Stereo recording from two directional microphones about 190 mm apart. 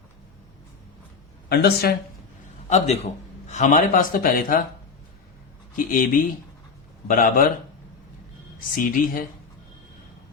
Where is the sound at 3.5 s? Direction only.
40° left (ahead or behind).